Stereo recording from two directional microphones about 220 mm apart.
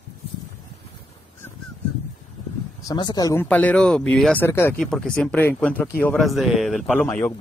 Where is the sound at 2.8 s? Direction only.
20° left (ahead or behind).